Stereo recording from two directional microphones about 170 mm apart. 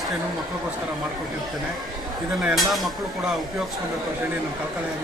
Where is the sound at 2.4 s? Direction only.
5° right (ahead or behind).